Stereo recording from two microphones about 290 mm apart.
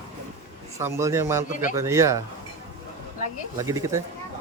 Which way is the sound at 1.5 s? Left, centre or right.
Left.